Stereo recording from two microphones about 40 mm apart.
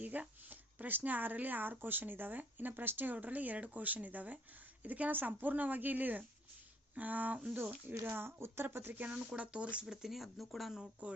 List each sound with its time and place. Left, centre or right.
0.0 s speech: right
7.9 s speech: right
8.6 s speech: right
9.0 s speech: right
9.8 s speech: centre
11.0 s speech: right